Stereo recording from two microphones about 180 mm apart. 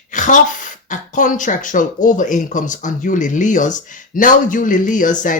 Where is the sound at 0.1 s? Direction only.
45° left (ahead or behind).